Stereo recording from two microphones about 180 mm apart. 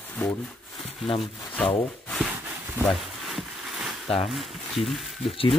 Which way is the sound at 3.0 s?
Centre (ahead or behind).